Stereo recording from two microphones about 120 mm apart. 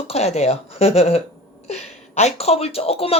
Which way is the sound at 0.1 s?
60° left (ahead or behind).